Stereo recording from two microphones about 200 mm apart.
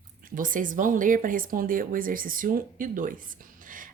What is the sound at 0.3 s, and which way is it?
A woman's voice, 40° right (ahead or behind).